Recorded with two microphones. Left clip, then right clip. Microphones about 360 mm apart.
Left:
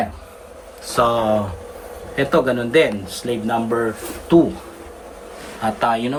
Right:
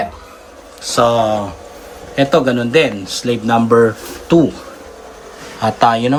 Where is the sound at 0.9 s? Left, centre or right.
Centre.